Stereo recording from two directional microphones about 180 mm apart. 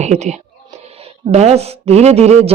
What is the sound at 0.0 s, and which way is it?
Speech, 40° right (ahead or behind).